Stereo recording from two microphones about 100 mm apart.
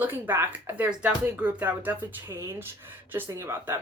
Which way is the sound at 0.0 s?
20° right (ahead or behind).